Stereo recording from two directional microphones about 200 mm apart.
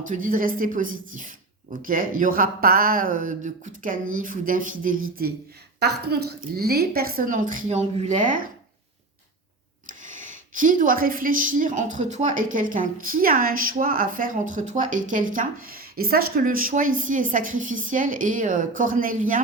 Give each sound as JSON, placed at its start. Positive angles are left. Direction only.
{"t": 0.0, "sound": "a woman's voice", "side_deg": -40}
{"t": 5.8, "sound": "a woman's voice", "side_deg": -55}
{"t": 10.0, "sound": "speech", "side_deg": -40}